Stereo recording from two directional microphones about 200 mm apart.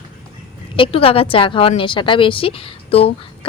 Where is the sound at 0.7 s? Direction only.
25° left (ahead or behind).